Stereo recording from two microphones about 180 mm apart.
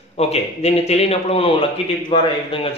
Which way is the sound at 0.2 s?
35° left (ahead or behind).